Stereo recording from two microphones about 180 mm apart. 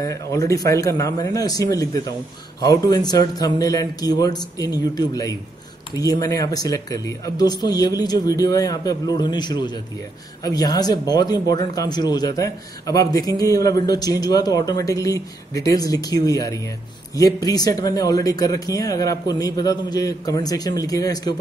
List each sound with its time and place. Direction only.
0.0 s speech: 20° left (ahead or behind)